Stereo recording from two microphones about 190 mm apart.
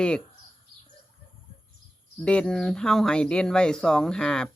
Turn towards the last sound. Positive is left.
turn(degrees=5)  # may be behind; listen again after turning